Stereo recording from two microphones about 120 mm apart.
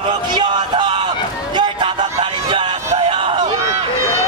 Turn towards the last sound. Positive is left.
turn(degrees=-50)  # may be behind; listen again after turning